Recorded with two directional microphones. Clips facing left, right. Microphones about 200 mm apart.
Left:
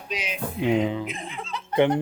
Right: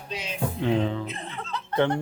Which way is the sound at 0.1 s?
15° left (ahead or behind).